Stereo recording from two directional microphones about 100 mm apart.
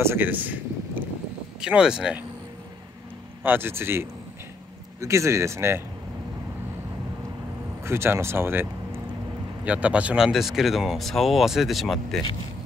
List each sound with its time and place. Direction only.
0.0 s speech: 20° right (ahead or behind)
3.4 s speech: 20° right (ahead or behind)
7.8 s speech: 25° right (ahead or behind); by 12.2 s centre (ahead or behind)